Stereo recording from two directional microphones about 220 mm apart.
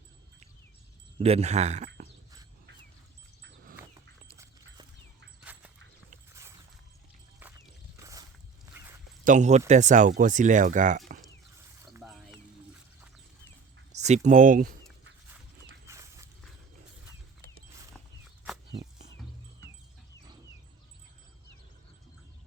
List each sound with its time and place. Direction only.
1.2 s speech: 30° right (ahead or behind)
3.4 s a sound: 40° right (ahead or behind)
5.4 s dog: 5° right (ahead or behind)
8.7 s dog: 10° right (ahead or behind)
9.2 s speech: 35° right (ahead or behind)
11.9 s a sound: 5° right (ahead or behind)
13.9 s speech: 30° right (ahead or behind)
15.9 s dog: 15° right (ahead or behind)